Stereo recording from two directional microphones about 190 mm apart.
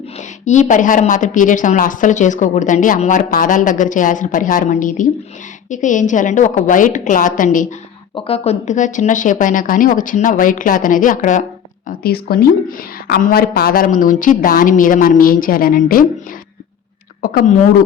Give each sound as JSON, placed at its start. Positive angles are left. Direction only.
{"t": 0.2, "sound": "a woman's voice", "side_deg": 40}
{"t": 8.1, "sound": "a woman's voice", "side_deg": 30}
{"t": 11.9, "sound": "a woman's voice", "side_deg": 55}
{"t": 17.2, "sound": "a woman's voice", "side_deg": 45}